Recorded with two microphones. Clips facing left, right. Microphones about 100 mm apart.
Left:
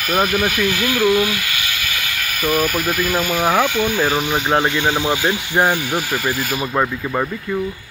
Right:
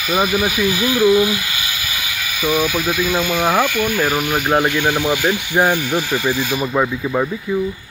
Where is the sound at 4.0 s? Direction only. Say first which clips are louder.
Even; 5° right (ahead or behind).